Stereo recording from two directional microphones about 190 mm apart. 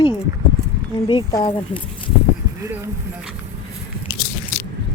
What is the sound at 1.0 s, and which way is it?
Speech, 25° left (ahead or behind).